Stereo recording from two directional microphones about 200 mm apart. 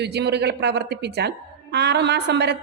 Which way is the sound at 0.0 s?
55° right (ahead or behind).